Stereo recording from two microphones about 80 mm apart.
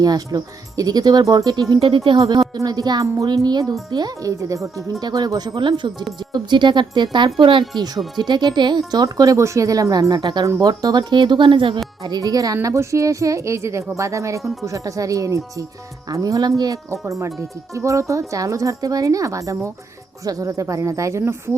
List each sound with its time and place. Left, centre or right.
0.0 s a child's voice: right
1.7 s speech: right
2.6 s a child's voice: right
4.3 s speech: right
5.0 s speech: right
5.5 s speech: right
7.3 s speech: right
7.8 s a child's voice: right
8.9 s speech: right
11.1 s speech: right
12.0 s speech: right